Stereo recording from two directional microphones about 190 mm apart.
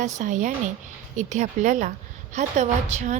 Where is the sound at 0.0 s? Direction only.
40° right (ahead or behind).